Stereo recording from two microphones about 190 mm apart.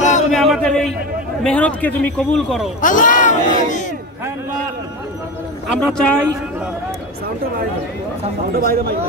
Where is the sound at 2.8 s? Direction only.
45° left (ahead or behind).